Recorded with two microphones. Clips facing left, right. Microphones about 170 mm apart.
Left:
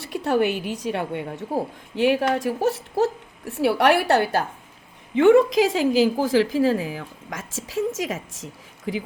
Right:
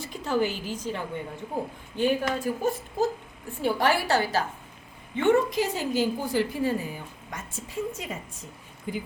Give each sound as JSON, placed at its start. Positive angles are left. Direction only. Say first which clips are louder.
{"t": 0.0, "sound": "a woman's voice", "louder": "left 5 dB", "side_deg": 70}
{"t": 5.1, "sound": "a woman's voice", "louder": "left 7 dB", "side_deg": 90}